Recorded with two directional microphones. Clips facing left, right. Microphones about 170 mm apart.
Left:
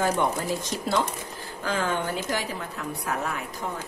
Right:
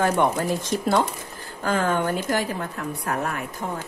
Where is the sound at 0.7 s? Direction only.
50° right (ahead or behind).